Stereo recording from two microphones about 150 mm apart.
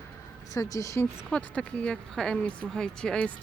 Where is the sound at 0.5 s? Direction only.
20° left (ahead or behind).